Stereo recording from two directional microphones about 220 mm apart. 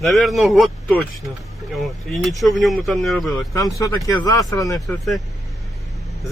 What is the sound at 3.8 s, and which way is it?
Speech, 15° left (ahead or behind).